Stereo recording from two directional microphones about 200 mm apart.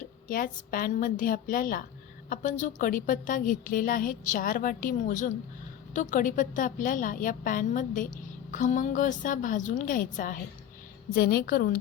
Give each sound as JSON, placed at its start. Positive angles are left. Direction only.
{"t": 0.3, "sound": "a woman's voice", "side_deg": 45}